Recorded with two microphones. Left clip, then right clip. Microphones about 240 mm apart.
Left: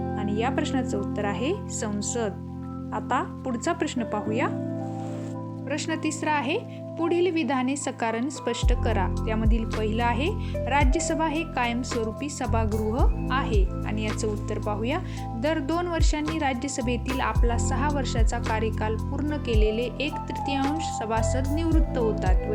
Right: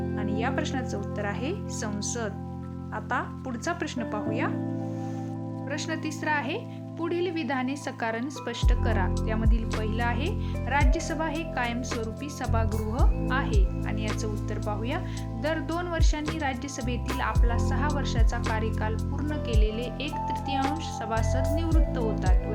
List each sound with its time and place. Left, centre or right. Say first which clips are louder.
0.2 s a woman's voice: left 3 dB; centre
5.7 s a woman's voice: left 4 dB; centre